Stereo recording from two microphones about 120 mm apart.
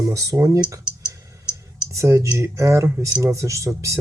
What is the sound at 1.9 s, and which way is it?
Speech, 25° right (ahead or behind).